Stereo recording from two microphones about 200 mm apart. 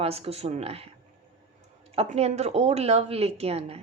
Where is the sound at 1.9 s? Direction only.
30° right (ahead or behind).